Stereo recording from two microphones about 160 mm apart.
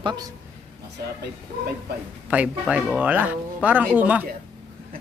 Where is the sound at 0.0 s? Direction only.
25° right (ahead or behind).